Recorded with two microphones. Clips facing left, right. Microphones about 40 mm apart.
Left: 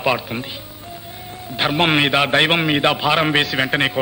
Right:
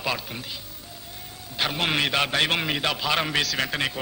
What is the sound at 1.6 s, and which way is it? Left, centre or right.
A man's voice, left.